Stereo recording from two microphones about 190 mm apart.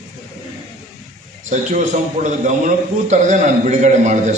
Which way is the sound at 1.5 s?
40° right (ahead or behind).